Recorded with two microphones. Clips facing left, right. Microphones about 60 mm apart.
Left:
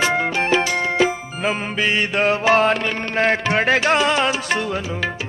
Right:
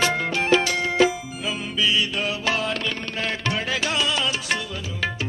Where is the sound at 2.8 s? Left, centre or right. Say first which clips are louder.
Left 8 dB; left.